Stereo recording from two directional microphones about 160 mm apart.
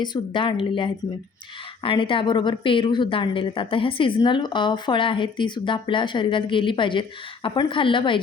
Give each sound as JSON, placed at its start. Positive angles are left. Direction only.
{"t": 0.0, "sound": "a woman's voice", "side_deg": 30}